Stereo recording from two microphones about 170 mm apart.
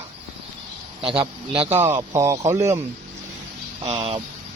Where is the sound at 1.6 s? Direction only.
10° right (ahead or behind).